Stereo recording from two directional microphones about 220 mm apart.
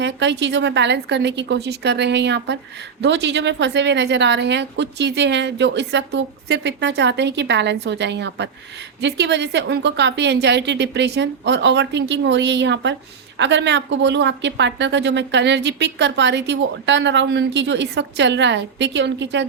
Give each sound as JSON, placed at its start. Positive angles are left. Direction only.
{"t": 0.0, "sound": "speech", "side_deg": -55}